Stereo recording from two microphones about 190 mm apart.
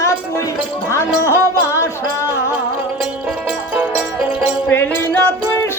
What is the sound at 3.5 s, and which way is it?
Music, 10° right (ahead or behind).